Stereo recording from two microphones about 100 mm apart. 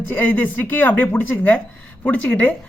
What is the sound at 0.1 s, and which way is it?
Speech, 15° left (ahead or behind).